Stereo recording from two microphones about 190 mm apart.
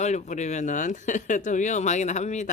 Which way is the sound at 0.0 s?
40° left (ahead or behind).